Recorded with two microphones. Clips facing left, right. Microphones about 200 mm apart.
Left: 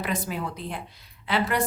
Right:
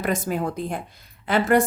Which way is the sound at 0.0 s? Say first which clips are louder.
Right 5 dB; 45° right (ahead or behind).